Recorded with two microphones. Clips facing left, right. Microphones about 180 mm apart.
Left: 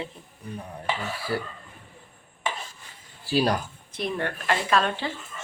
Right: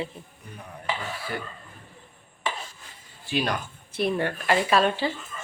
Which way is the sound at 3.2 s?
35° left (ahead or behind).